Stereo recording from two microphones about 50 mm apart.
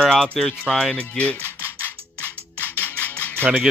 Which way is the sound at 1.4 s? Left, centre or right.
Left.